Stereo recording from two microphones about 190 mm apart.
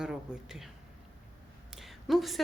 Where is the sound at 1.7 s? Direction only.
Centre (ahead or behind).